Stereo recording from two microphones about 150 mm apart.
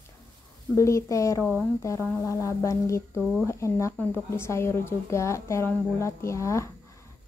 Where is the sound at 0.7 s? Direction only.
20° left (ahead or behind).